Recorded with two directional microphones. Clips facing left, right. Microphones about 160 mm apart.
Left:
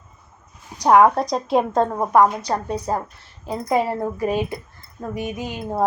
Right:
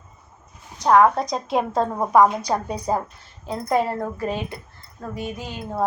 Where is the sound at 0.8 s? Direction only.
15° left (ahead or behind).